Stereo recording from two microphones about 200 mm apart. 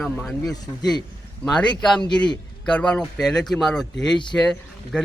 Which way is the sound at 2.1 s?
20° left (ahead or behind).